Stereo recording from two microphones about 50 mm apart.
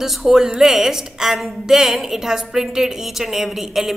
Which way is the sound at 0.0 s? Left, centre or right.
Centre.